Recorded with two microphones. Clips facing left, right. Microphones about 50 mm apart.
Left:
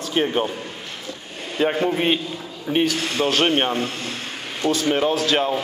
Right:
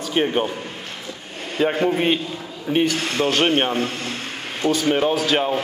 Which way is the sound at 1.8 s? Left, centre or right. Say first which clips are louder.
Right 1 dB; centre.